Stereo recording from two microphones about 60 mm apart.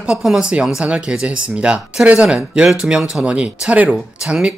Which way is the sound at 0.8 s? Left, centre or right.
Right.